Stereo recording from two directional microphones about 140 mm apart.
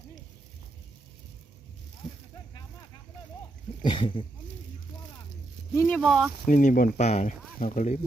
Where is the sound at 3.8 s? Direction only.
35° left (ahead or behind).